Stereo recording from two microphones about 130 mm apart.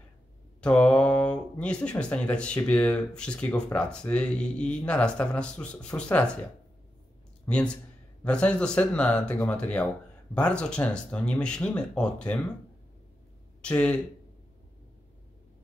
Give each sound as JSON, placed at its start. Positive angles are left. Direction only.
{"t": 0.6, "sound": "speech", "side_deg": 10}
{"t": 7.4, "sound": "speech", "side_deg": 10}
{"t": 13.6, "sound": "speech", "side_deg": 10}